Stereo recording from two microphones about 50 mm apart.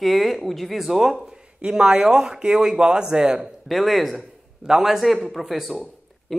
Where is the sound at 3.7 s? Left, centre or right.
Centre.